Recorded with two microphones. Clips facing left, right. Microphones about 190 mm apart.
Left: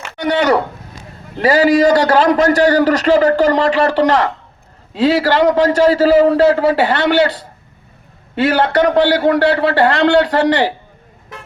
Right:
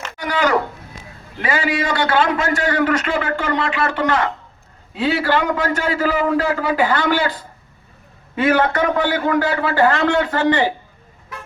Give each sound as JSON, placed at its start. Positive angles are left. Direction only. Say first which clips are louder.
{"t": 0.2, "sound": "a man's voice", "louder": "left 5 dB", "side_deg": 30}
{"t": 4.9, "sound": "a man's voice", "louder": "left 6 dB", "side_deg": 90}
{"t": 5.5, "sound": "a man's voice", "louder": "left 9 dB", "side_deg": 35}
{"t": 6.9, "sound": "a man's voice", "louder": "left 5 dB", "side_deg": 70}